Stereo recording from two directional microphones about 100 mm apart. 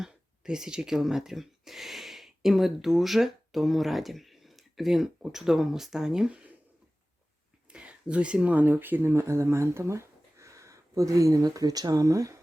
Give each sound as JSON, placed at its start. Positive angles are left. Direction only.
{"t": 0.0, "sound": "speech", "side_deg": -5}
{"t": 7.7, "sound": "speech", "side_deg": -10}